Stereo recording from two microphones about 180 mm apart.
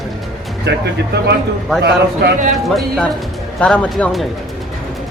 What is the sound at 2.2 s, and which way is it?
Speech, 60° right (ahead or behind).